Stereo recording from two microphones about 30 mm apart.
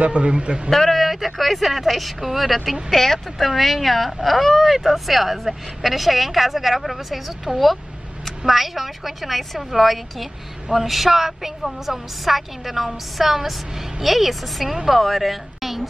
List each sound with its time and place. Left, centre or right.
0.0 s a man's voice: right
0.3 s a man's voice: right
0.7 s speech: centre
1.0 s speech: centre
3.0 s speech: centre
3.4 s speech: centre